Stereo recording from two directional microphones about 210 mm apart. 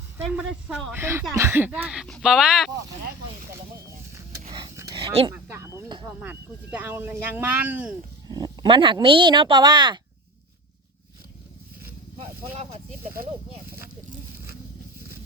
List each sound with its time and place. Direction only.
0.3 s speech: centre (ahead or behind)
4.4 s dog: 20° right (ahead or behind)
5.3 s speech: 10° right (ahead or behind)
8.3 s speech: 20° right (ahead or behind)
12.1 s speech: 30° right (ahead or behind)